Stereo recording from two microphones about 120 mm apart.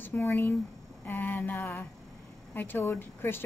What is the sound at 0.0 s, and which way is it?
Speech, 20° left (ahead or behind).